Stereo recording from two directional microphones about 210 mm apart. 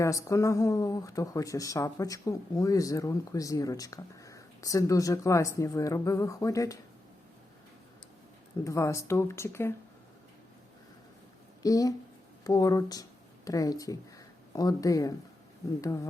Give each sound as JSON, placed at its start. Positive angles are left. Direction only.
{"t": 0.0, "sound": "speech", "side_deg": 15}
{"t": 8.6, "sound": "speech", "side_deg": 15}
{"t": 11.6, "sound": "speech", "side_deg": 15}